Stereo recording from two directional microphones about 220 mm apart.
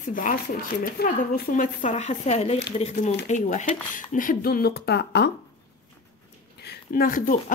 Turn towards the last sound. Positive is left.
turn(degrees=40)  # may be behind; listen again after turning